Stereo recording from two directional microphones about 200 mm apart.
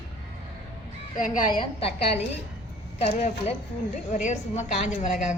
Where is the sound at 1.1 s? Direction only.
40° left (ahead or behind).